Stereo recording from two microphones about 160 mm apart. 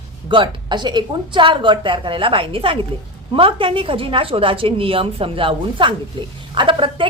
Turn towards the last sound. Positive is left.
turn(degrees=-30)  # may be behind; listen again after turning